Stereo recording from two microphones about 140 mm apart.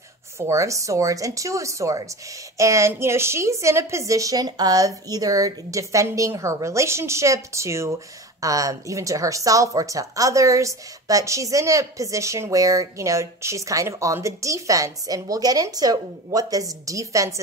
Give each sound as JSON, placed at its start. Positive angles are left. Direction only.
{"t": 0.4, "sound": "a woman's voice", "side_deg": -20}